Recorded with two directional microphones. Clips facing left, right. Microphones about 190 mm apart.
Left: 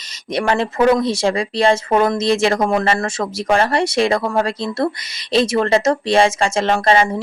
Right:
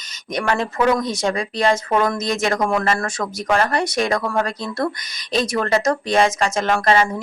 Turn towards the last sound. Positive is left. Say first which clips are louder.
# left 2 dB
turn(degrees=30)  # may be behind; listen again after turning